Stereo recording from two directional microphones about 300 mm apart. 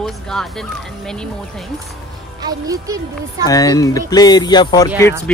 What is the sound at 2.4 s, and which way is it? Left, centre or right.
Speech, centre.